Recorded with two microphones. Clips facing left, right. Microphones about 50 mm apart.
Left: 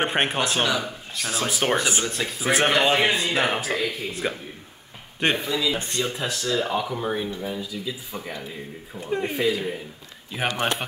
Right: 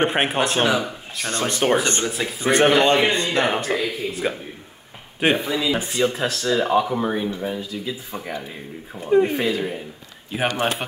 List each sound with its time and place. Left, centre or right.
0.0 s speech: centre
0.6 s speech: centre
1.1 s speech: centre
5.5 s speech: right
5.8 s speech: centre
6.4 s speech: centre
9.0 s speech: centre